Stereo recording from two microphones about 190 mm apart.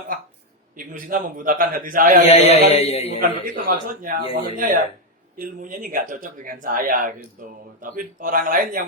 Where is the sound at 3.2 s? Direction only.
45° right (ahead or behind).